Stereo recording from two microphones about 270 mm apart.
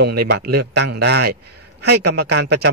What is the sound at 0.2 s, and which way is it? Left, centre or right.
A man's voice, right.